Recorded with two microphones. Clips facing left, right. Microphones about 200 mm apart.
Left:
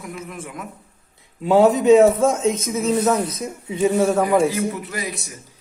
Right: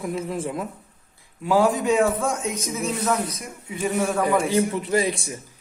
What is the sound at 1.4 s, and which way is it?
Speech, 25° left (ahead or behind).